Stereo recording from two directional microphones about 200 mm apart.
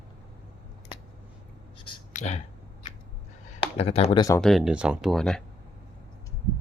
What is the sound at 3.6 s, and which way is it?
Speech, 30° left (ahead or behind).